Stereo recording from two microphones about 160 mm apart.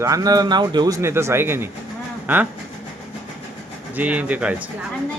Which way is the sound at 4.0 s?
10° right (ahead or behind).